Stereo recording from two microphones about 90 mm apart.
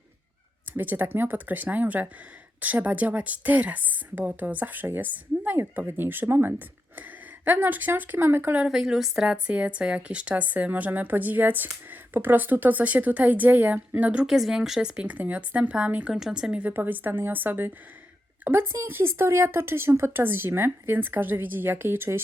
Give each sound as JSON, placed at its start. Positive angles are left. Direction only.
{"t": 0.8, "sound": "speech", "side_deg": -20}
{"t": 8.6, "sound": "speech", "side_deg": -5}
{"t": 14.3, "sound": "speech", "side_deg": -5}